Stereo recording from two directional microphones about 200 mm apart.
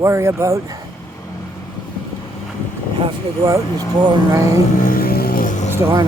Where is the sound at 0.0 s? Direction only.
15° right (ahead or behind).